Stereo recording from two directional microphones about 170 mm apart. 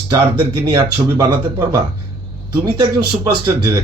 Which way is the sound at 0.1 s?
25° right (ahead or behind).